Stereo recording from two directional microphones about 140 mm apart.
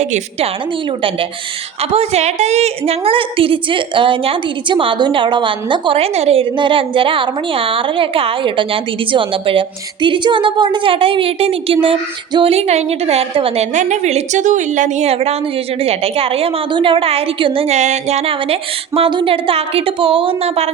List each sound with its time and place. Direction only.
0.0 s a woman's voice: 50° right (ahead or behind)
13.7 s a woman's voice: 55° right (ahead or behind)